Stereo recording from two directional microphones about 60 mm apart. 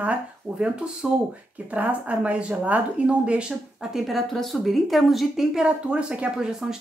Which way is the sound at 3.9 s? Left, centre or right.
Centre.